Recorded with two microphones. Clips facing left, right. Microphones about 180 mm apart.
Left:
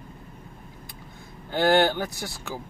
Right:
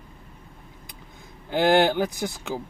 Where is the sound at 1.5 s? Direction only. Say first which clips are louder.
Right 2 dB; 15° right (ahead or behind).